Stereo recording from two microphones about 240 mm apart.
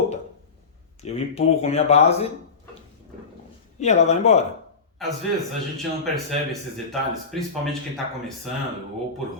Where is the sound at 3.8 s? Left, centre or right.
Left.